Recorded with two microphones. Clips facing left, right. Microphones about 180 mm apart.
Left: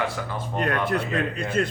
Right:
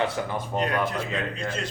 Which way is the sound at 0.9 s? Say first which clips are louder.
Left 4 dB; 60° left (ahead or behind).